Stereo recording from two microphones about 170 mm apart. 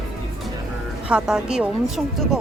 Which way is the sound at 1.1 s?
5° right (ahead or behind).